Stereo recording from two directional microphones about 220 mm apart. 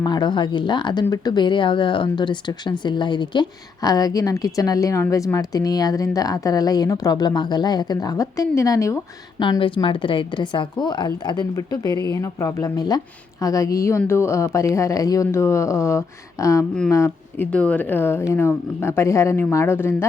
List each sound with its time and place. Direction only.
0.0 s a woman's voice: 20° left (ahead or behind)